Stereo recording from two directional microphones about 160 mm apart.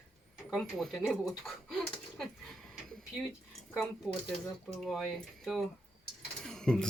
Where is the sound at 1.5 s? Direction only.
Centre (ahead or behind).